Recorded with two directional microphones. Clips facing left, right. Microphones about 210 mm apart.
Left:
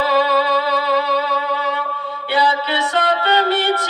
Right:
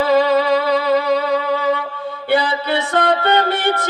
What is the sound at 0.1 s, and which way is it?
Music, 50° right (ahead or behind).